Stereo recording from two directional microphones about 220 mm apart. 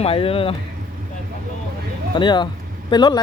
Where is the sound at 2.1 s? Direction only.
20° left (ahead or behind).